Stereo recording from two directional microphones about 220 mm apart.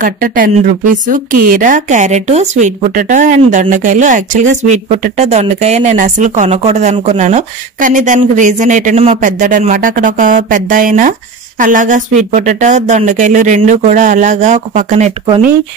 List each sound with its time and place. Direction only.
0.0 s speech: 40° right (ahead or behind)